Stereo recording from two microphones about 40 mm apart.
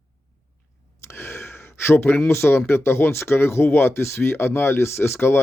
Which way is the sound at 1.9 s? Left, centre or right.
Left.